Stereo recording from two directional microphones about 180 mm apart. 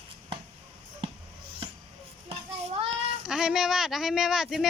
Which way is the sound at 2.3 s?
30° right (ahead or behind).